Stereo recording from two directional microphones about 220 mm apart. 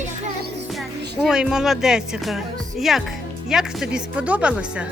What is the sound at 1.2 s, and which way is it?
Speech, 5° right (ahead or behind).